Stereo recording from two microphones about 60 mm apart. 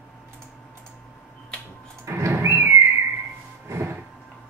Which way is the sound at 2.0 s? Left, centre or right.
Right.